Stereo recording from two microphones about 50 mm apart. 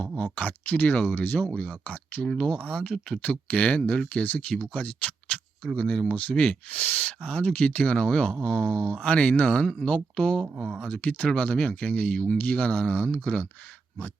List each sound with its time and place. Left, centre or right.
0.3 s speech: left
1.5 s speech: left
2.2 s speech: centre
2.5 s speech: left
6.7 s speech: left
12.4 s speech: left